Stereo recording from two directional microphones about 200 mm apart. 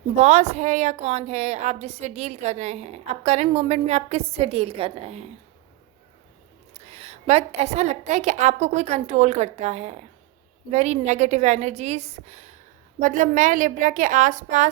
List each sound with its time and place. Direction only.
0.2 s a woman's voice: 35° right (ahead or behind)
6.8 s a woman's voice: 30° right (ahead or behind)